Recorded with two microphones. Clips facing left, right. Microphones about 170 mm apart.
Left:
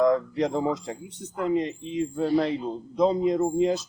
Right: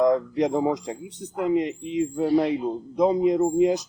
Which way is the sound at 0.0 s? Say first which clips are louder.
Right 2 dB; 15° right (ahead or behind).